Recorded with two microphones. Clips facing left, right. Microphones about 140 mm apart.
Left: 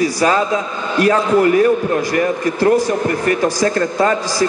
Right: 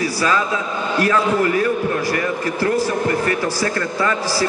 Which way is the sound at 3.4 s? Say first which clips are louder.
Left 5 dB; 40° left (ahead or behind).